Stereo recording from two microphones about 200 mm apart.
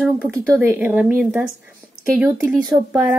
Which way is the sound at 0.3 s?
10° right (ahead or behind).